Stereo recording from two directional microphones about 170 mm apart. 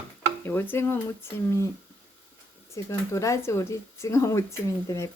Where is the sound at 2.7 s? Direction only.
15° left (ahead or behind).